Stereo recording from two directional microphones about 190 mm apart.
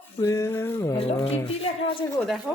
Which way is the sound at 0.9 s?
25° left (ahead or behind).